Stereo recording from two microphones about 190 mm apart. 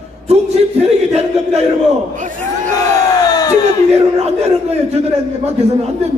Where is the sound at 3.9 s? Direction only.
35° right (ahead or behind).